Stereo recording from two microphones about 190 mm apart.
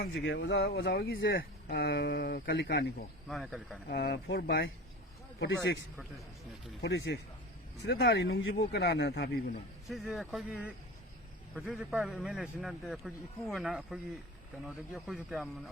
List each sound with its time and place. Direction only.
0.0 s speech: 70° left (ahead or behind)
3.2 s a man's voice: centre (ahead or behind)
3.8 s speech: 60° left (ahead or behind)
5.4 s speech: 75° left (ahead or behind)
6.8 s speech: 65° left (ahead or behind)
9.9 s a man's voice: centre (ahead or behind)